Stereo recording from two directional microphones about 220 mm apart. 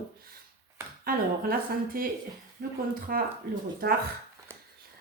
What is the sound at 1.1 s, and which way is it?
A woman's voice, 40° right (ahead or behind).